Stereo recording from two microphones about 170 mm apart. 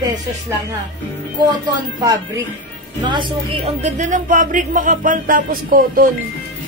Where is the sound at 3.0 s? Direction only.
30° right (ahead or behind); by 6.1 s 55° right (ahead or behind).